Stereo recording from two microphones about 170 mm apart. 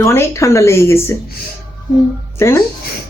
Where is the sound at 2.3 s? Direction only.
15° left (ahead or behind).